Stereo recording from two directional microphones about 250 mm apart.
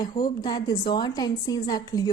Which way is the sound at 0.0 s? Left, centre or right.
Centre.